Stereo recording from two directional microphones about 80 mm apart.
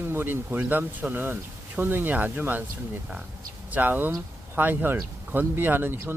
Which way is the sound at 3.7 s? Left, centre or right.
Right.